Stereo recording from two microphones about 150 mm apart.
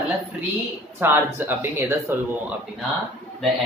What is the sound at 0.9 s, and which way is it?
Speech, 15° right (ahead or behind).